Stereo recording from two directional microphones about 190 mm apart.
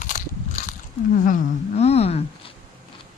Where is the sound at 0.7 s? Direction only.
45° left (ahead or behind).